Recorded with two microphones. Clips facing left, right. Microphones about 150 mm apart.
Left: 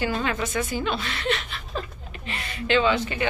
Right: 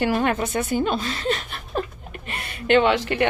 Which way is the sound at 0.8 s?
45° right (ahead or behind).